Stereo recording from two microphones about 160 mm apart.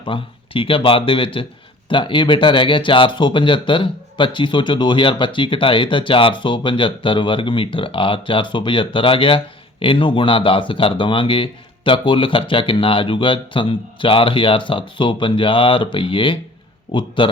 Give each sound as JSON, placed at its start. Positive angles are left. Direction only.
{"t": 0.0, "sound": "speech", "side_deg": 35}